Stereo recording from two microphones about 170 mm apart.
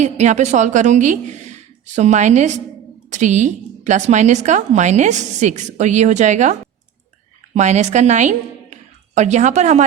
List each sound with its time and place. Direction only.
0.0 s a woman's voice: 45° right (ahead or behind)